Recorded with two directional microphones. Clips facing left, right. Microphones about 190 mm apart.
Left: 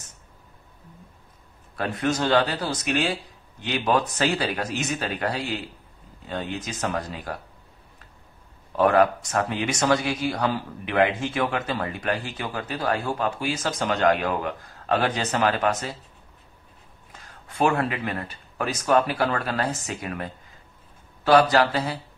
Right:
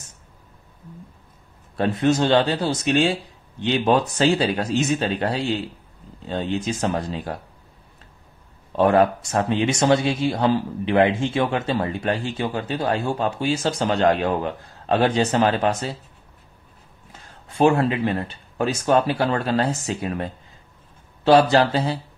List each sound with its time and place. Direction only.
1.8 s speech: 25° right (ahead or behind)
8.7 s speech: 25° right (ahead or behind)
17.3 s speech: 30° right (ahead or behind)